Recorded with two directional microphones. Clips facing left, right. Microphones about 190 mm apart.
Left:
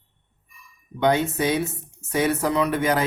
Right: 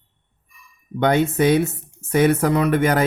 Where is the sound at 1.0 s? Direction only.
60° right (ahead or behind).